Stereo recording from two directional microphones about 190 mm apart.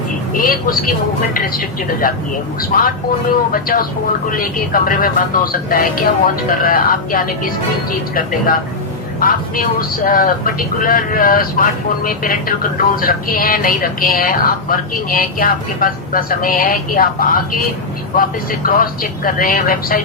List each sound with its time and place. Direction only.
0.3 s speech: 50° left (ahead or behind)
9.2 s speech: 50° left (ahead or behind)
18.7 s speech: 45° left (ahead or behind)